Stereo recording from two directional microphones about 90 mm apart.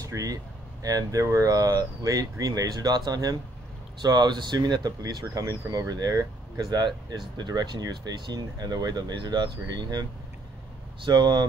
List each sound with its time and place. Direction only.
0.0 s speech: 40° right (ahead or behind)
11.1 s speech: 55° right (ahead or behind)